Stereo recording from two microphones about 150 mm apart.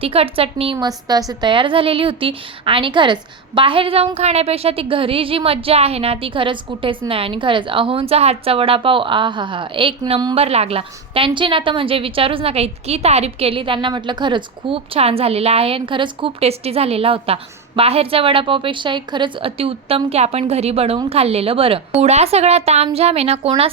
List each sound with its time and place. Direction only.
0.0 s a woman's voice: 40° right (ahead or behind)
0.8 s a woman's voice: 25° right (ahead or behind)
10.3 s a woman's voice: 40° right (ahead or behind)